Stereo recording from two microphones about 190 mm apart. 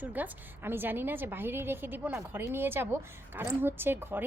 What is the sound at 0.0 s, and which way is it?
A woman's voice, 10° right (ahead or behind).